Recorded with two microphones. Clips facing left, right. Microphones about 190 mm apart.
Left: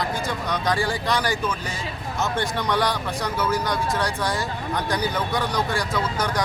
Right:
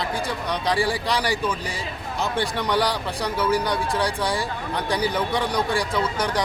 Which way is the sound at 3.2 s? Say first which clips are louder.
Right 3 dB; 30° right (ahead or behind).